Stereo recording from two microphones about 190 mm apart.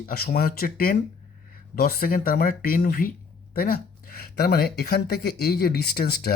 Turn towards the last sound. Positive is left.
turn(degrees=55)  # may be behind; listen again after turning